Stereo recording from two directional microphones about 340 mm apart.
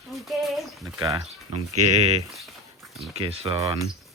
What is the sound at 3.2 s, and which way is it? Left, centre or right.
Speech, centre.